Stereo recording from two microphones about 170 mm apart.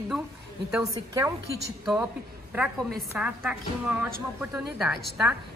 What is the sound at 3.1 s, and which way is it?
A woman's voice, 10° right (ahead or behind).